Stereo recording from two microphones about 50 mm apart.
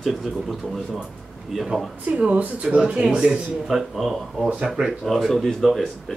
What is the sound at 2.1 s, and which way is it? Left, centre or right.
Speech, right.